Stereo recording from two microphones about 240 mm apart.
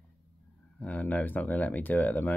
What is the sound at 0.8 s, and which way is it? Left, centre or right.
Speech, centre.